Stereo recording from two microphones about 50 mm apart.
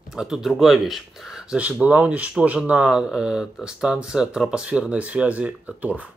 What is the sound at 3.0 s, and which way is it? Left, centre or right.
Speech, centre.